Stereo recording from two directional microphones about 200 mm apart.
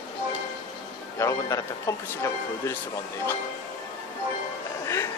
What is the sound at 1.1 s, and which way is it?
Speech, 15° left (ahead or behind).